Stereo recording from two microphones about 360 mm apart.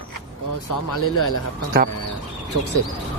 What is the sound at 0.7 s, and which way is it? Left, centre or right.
Speech, left.